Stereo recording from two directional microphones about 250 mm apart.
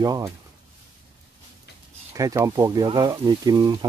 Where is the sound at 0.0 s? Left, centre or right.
Centre.